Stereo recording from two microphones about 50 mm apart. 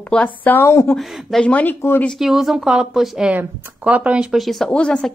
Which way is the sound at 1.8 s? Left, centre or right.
Left.